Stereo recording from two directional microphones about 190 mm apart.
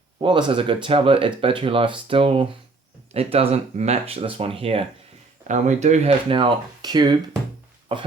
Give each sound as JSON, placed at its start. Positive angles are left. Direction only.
{"t": 0.2, "sound": "speech", "side_deg": -25}